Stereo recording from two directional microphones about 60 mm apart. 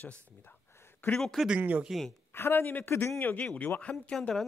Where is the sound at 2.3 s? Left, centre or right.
Left.